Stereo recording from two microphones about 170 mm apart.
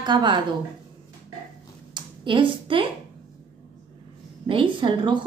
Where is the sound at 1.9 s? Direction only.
30° right (ahead or behind).